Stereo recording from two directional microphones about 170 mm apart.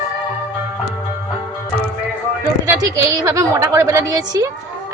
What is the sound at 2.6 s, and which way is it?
A woman's voice, 15° right (ahead or behind).